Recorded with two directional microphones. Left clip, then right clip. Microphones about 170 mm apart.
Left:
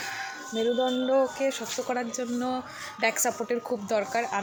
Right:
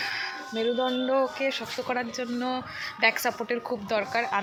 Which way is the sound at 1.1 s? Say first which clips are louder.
Left 1 dB; 15° left (ahead or behind).